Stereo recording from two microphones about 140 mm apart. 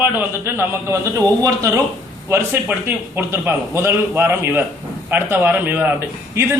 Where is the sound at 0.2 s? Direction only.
15° right (ahead or behind).